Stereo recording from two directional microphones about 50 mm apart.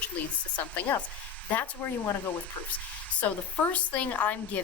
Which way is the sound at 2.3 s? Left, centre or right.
Left.